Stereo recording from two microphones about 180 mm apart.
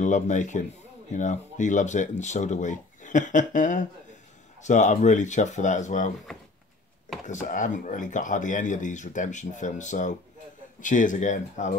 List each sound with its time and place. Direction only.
0.0 s speech: 45° left (ahead or behind)
7.2 s speech: 45° left (ahead or behind)